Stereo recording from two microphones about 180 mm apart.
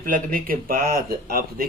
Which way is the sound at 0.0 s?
50° right (ahead or behind).